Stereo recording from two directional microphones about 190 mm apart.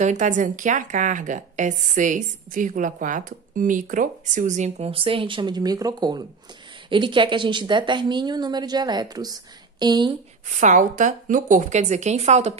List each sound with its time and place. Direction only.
0.0 s a woman's voice: 40° right (ahead or behind); by 10.1 s 20° right (ahead or behind)
10.6 s a woman's voice: 40° right (ahead or behind)